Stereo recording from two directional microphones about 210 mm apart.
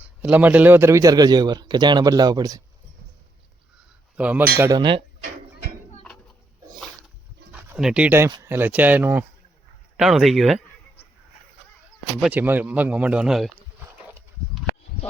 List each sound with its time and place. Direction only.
0.0 s a man's voice: 10° right (ahead or behind)
4.2 s a man's voice: 5° right (ahead or behind)
4.8 s speech: 25° right (ahead or behind)
7.7 s a man's voice: 5° right (ahead or behind)
12.2 s a man's voice: 10° right (ahead or behind)